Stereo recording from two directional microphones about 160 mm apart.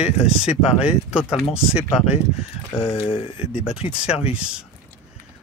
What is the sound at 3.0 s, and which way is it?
Speech, 35° left (ahead or behind).